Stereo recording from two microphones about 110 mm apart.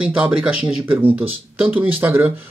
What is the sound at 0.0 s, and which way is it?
Speech, 10° right (ahead or behind).